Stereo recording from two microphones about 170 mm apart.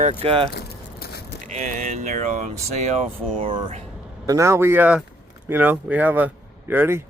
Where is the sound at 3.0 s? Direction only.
35° right (ahead or behind).